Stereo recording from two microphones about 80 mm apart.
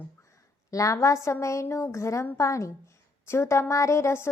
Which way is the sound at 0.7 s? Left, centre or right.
Left.